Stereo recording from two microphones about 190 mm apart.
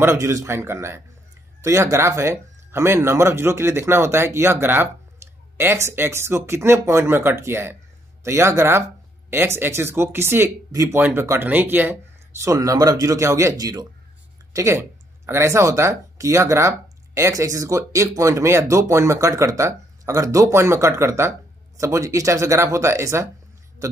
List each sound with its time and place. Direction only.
0.0 s speech: 15° right (ahead or behind)